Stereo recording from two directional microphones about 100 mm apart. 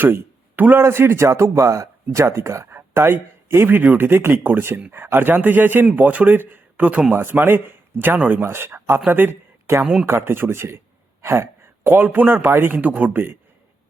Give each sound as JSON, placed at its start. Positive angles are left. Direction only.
{"t": 0.0, "sound": "a man's voice", "side_deg": -20}
{"t": 9.8, "sound": "speech", "side_deg": -5}
{"t": 10.1, "sound": "a man's voice", "side_deg": -25}